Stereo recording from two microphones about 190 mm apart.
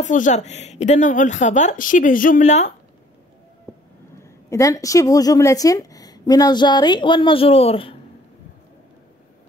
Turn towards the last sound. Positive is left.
turn(degrees=30)  # may be behind; listen again after turning